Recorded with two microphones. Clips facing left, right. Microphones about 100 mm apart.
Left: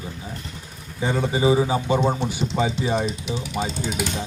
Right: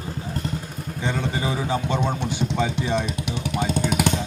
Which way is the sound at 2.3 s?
55° right (ahead or behind).